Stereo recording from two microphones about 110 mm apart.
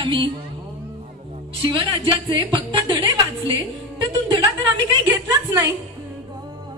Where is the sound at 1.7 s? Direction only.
50° right (ahead or behind).